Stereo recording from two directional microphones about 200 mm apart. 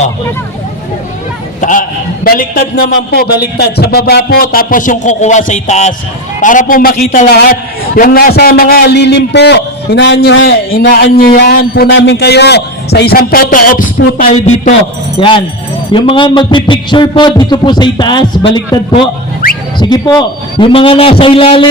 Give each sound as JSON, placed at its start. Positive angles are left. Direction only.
{"t": 2.2, "sound": "a man's voice", "side_deg": 45}
{"t": 15.2, "sound": "a man's voice", "side_deg": 25}